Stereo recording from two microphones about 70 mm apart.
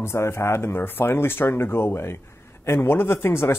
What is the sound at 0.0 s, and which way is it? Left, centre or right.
A man's voice, left.